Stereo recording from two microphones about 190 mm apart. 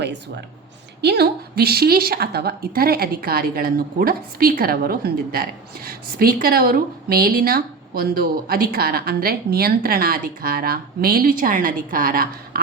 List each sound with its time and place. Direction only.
1.0 s a woman's voice: 55° right (ahead or behind)